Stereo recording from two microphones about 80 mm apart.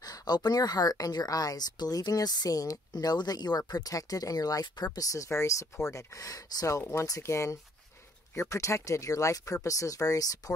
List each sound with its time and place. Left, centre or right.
0.0 s speech: left